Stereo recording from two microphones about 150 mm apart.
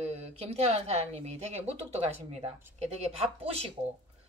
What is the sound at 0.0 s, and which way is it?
A woman's voice, 45° right (ahead or behind).